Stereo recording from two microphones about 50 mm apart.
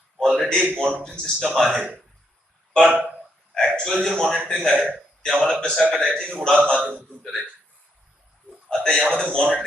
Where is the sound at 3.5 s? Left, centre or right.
Centre.